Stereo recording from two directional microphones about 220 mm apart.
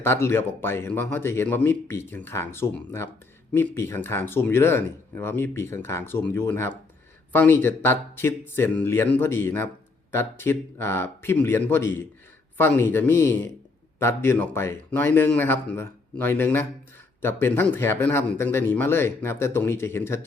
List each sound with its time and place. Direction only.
0.0 s speech: 10° left (ahead or behind)